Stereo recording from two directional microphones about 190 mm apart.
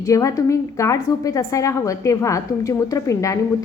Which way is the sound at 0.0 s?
15° left (ahead or behind).